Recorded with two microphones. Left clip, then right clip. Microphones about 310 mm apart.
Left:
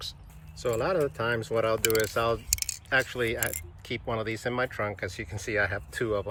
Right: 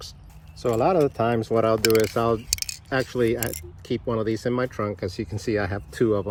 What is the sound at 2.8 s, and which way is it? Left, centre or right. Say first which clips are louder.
Speech: right 3 dB; centre.